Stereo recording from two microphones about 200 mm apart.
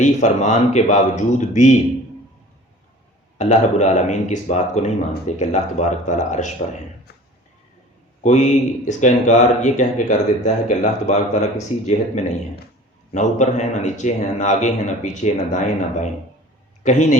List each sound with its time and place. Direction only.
0.0 s speech: 35° left (ahead or behind)
3.3 s speech: 35° left (ahead or behind)
8.2 s speech: 35° left (ahead or behind)